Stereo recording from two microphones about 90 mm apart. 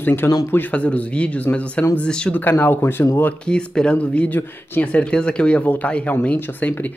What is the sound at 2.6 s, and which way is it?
Speech, 25° left (ahead or behind).